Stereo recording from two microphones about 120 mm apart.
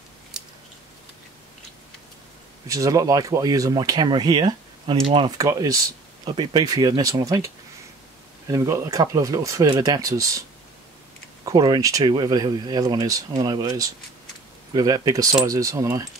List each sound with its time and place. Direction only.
2.7 s speech: 30° right (ahead or behind); by 5.3 s 45° right (ahead or behind)
5.4 s speech: 30° right (ahead or behind)
11.4 s speech: 35° right (ahead or behind)